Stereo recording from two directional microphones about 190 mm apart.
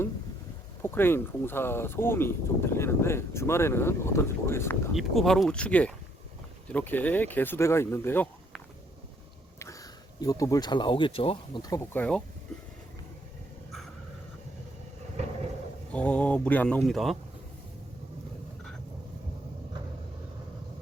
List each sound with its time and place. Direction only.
0.8 s speech: 10° left (ahead or behind)
4.9 s speech: centre (ahead or behind)
10.2 s speech: 20° left (ahead or behind)
15.9 s speech: 5° left (ahead or behind)